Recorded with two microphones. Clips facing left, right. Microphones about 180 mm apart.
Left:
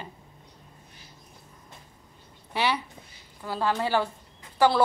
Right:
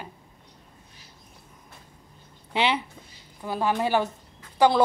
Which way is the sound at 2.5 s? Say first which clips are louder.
Right 2 dB; 20° right (ahead or behind).